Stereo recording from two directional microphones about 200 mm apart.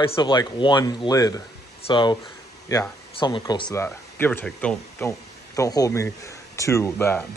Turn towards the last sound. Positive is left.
turn(degrees=10)  # may be behind; listen again after turning